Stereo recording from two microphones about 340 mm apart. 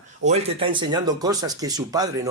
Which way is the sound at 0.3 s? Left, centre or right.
Centre.